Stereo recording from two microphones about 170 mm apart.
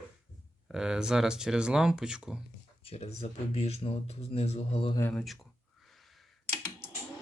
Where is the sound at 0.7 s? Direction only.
5° right (ahead or behind).